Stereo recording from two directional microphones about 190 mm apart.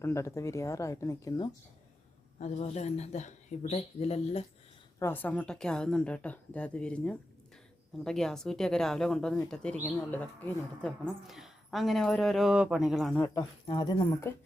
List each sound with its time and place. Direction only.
0.0 s a woman's voice: 15° left (ahead or behind)
2.4 s speech: 35° left (ahead or behind)
4.9 s a woman's voice: 10° left (ahead or behind)
13.1 s a woman's voice: 15° left (ahead or behind)